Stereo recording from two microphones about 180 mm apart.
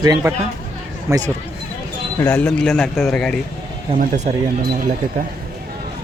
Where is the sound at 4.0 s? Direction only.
40° right (ahead or behind).